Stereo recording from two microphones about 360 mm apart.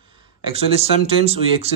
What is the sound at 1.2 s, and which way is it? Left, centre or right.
Speech, centre.